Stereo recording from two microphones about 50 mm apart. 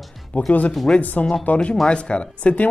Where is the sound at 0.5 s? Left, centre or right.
Left.